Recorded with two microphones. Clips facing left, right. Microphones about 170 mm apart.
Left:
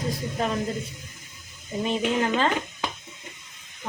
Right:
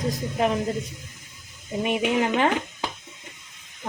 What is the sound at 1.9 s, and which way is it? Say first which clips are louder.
Speech: right 1 dB; 15° right (ahead or behind).